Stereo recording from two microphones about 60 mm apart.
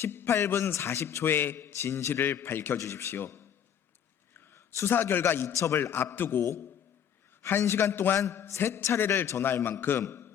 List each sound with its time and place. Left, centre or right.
0.0 s a sound: left
0.3 s a man's voice: left
1.5 s a man's voice: left
2.7 s a man's voice: left
4.5 s a man's voice: left
7.4 s a man's voice: left
8.2 s a man's voice: left
10.0 s speech: left